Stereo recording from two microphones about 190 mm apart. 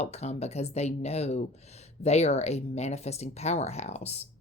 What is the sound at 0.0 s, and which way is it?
A woman's voice, 35° left (ahead or behind).